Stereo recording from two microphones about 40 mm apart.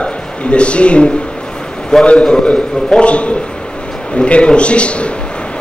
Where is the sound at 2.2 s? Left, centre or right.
Centre.